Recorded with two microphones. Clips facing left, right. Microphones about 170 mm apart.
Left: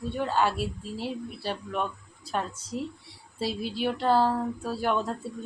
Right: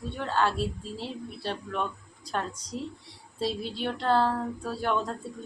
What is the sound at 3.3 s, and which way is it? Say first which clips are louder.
Speech: even; 5° left (ahead or behind).